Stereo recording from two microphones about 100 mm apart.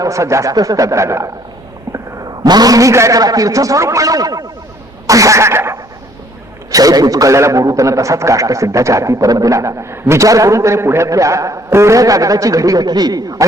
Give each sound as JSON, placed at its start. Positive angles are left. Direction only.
{"t": 0.0, "sound": "a man's voice", "side_deg": -30}
{"t": 2.4, "sound": "a man's voice", "side_deg": -40}
{"t": 5.0, "sound": "a sound", "side_deg": -35}
{"t": 6.7, "sound": "a man's voice", "side_deg": -35}